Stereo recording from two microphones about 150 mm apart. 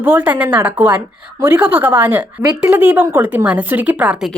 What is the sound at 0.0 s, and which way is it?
A woman's voice, 10° right (ahead or behind).